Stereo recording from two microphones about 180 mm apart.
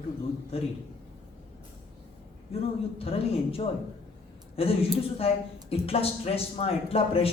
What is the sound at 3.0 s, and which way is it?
Speech, 30° left (ahead or behind).